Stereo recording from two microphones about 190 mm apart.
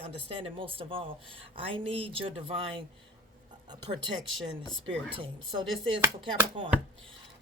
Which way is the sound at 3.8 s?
25° right (ahead or behind).